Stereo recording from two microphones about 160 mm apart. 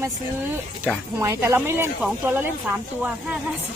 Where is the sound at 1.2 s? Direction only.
15° right (ahead or behind).